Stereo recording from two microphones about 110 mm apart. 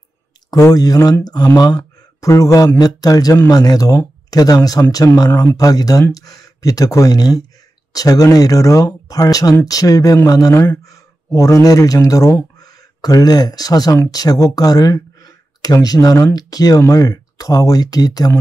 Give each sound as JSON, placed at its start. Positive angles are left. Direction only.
{"t": 0.5, "sound": "speech", "side_deg": 35}